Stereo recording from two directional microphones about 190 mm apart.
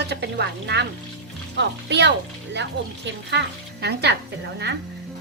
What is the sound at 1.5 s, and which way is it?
Speech, 65° right (ahead or behind).